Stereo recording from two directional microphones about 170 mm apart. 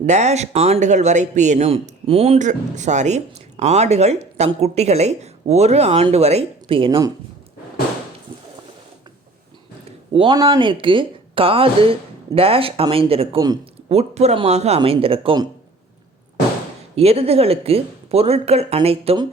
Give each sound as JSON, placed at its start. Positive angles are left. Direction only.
{"t": 0.0, "sound": "a man's voice", "side_deg": -45}
{"t": 10.1, "sound": "speech", "side_deg": -30}
{"t": 13.4, "sound": "a sound", "side_deg": -25}
{"t": 13.9, "sound": "speech", "side_deg": -40}
{"t": 16.9, "sound": "speech", "side_deg": -35}